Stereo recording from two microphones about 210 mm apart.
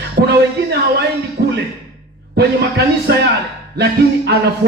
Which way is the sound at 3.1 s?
50° right (ahead or behind).